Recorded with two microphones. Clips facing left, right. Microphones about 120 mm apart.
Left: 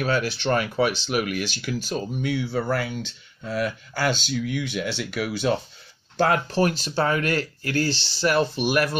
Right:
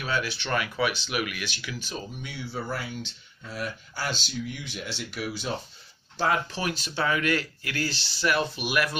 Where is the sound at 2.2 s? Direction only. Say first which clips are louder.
Left 10 dB; 70° left (ahead or behind).